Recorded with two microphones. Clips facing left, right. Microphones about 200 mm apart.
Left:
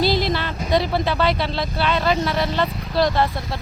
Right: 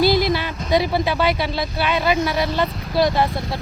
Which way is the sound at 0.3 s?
10° right (ahead or behind).